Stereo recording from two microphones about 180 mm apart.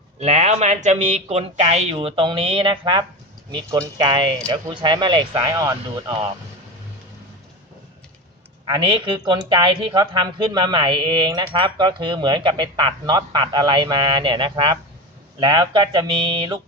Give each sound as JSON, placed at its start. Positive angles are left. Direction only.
{"t": 0.2, "sound": "speech", "side_deg": -35}
{"t": 8.6, "sound": "speech", "side_deg": -25}